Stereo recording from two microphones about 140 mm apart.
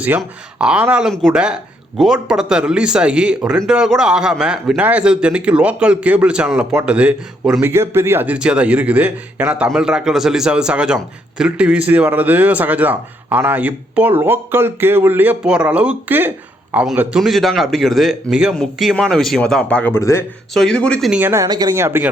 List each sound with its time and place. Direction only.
0.2 s a man's voice: 5° right (ahead or behind)
7.7 s a man's voice: 20° right (ahead or behind); by 20.2 s 20° left (ahead or behind)
20.5 s speech: 5° left (ahead or behind)
21.1 s a man's voice: 15° right (ahead or behind)
21.4 s speech: 25° right (ahead or behind)